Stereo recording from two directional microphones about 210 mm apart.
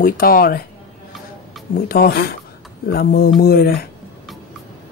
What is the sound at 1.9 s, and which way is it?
Speech, 45° left (ahead or behind).